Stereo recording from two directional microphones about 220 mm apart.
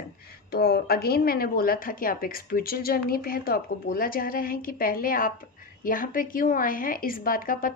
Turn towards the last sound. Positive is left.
turn(degrees=40)  # may be behind; listen again after turning